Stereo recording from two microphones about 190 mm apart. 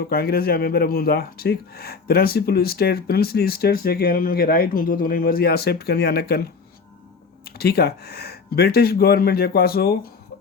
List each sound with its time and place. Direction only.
0.1 s speech: 50° left (ahead or behind)